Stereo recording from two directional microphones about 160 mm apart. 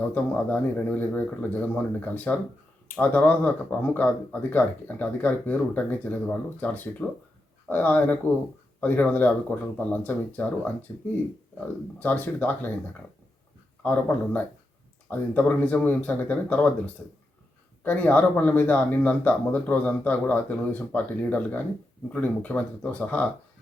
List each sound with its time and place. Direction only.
0.1 s speech: 10° left (ahead or behind)
13.8 s speech: 10° left (ahead or behind)